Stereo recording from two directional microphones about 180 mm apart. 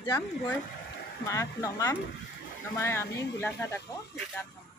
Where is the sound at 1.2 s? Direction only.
15° left (ahead or behind).